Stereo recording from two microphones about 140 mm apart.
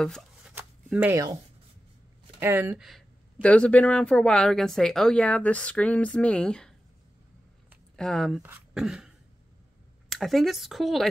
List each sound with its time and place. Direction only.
0.4 s shuffling cards: 5° right (ahead or behind)
1.1 s speech: 25° right (ahead or behind)
2.4 s speech: 20° right (ahead or behind)
3.3 s speech: 10° left (ahead or behind)
7.9 s speech: 5° left (ahead or behind)
8.7 s throat clearing: 5° right (ahead or behind)
10.0 s speech: centre (ahead or behind)